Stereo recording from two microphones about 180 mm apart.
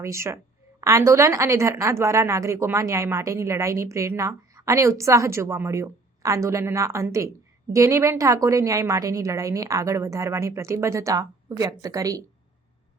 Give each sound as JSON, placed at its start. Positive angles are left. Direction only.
{"t": 0.0, "sound": "a woman's voice", "side_deg": -15}